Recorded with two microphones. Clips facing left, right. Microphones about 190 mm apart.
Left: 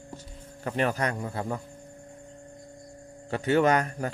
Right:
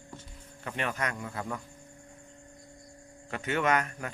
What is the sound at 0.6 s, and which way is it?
A man's voice, 35° left (ahead or behind).